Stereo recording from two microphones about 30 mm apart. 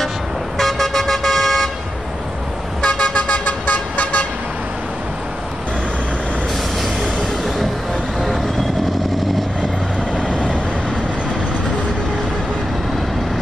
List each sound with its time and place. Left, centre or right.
0.6 s vehicle: centre
2.8 s vehicle: left
3.2 s vehicle: left
10.1 s vehicle: left